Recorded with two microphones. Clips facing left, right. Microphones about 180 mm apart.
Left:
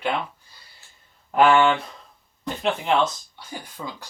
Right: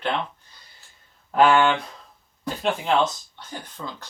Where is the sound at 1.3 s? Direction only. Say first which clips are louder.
Left 1 dB; 5° left (ahead or behind).